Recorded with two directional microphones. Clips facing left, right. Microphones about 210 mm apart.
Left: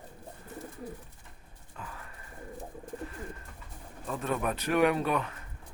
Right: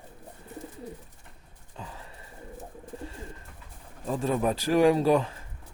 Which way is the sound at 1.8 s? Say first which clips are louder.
Right 2 dB; 25° right (ahead or behind).